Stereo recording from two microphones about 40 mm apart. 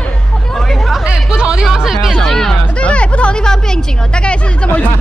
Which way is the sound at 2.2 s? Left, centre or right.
Centre.